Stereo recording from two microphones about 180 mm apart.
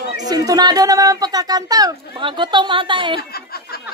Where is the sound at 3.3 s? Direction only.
60° left (ahead or behind).